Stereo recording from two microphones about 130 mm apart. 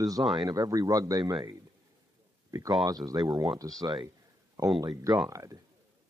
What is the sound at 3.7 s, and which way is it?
Speech, centre (ahead or behind).